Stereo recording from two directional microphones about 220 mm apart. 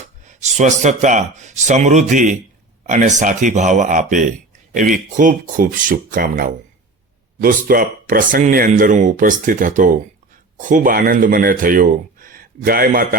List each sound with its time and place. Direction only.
0.4 s speech: 30° right (ahead or behind)